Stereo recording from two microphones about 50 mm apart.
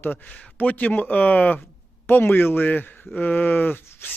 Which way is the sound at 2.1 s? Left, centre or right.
Left.